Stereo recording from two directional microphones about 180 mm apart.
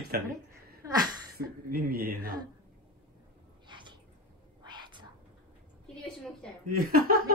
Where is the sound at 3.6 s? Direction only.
25° right (ahead or behind).